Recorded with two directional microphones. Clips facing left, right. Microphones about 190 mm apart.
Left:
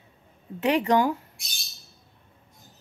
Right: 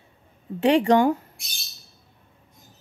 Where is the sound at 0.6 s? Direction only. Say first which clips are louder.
Right 4 dB; 35° right (ahead or behind).